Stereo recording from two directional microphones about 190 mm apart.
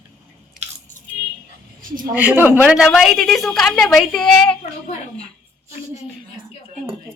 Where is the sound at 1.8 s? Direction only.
45° right (ahead or behind).